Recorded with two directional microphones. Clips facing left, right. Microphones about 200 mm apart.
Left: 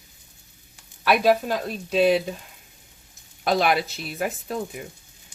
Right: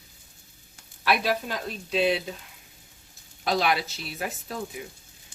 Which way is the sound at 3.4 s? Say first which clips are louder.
Left 4 dB; 55° left (ahead or behind).